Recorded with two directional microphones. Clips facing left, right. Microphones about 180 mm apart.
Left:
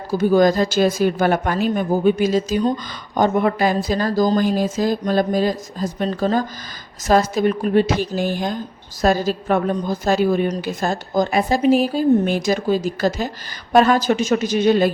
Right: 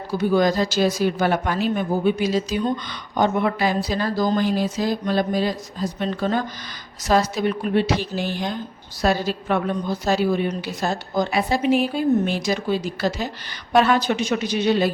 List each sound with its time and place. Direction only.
0.1 s speech: 45° left (ahead or behind)
7.0 s speech: 50° left (ahead or behind)